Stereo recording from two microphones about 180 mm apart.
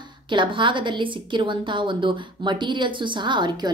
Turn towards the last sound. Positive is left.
turn(degrees=-25)  # may be behind; listen again after turning